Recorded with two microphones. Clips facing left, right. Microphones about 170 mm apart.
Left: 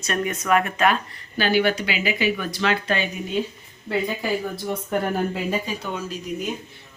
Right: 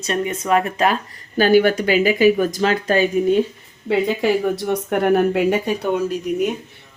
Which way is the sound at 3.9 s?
75° right (ahead or behind).